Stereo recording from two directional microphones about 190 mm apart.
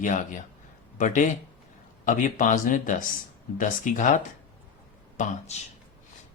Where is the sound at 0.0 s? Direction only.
40° left (ahead or behind).